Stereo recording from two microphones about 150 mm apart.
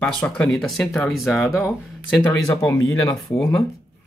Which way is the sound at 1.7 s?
10° left (ahead or behind).